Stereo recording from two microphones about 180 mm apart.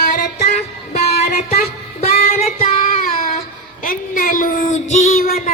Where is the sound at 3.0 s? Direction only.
55° left (ahead or behind).